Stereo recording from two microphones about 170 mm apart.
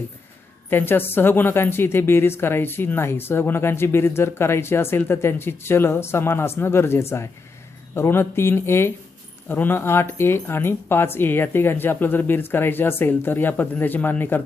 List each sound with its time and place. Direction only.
0.7 s speech: 10° left (ahead or behind)